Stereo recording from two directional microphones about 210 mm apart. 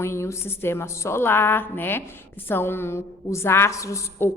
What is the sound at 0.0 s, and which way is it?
A woman's voice, 15° left (ahead or behind).